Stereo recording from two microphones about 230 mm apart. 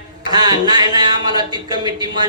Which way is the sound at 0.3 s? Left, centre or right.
Centre.